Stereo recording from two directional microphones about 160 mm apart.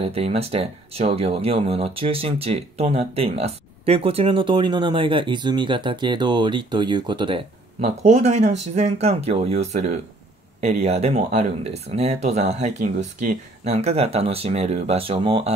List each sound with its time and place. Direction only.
0.0 s speech: 40° right (ahead or behind)
7.8 s speech: 45° right (ahead or behind)